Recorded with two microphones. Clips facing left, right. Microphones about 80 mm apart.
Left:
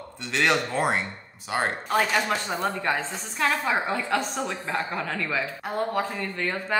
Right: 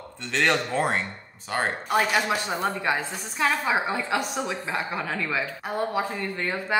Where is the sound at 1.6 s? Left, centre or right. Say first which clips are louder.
Even; centre.